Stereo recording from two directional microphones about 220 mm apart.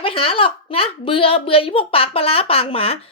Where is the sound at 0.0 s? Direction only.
25° left (ahead or behind).